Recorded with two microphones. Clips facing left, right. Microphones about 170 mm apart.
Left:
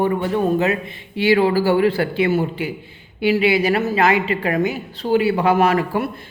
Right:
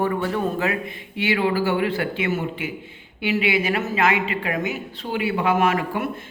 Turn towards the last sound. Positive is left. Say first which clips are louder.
# left 4 dB
turn(degrees=35)  # may be behind; listen again after turning